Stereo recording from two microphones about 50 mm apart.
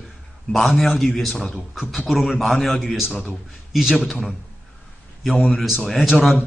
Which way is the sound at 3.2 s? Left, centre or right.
Centre.